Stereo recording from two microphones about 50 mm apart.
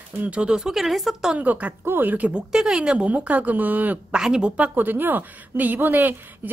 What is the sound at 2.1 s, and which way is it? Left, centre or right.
Speech, right.